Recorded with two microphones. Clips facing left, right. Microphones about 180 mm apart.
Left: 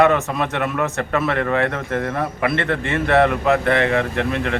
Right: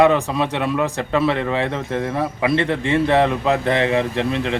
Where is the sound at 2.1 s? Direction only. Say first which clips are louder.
Right 1 dB; 15° right (ahead or behind).